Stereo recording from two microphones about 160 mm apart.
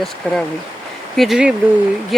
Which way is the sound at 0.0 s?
Centre (ahead or behind).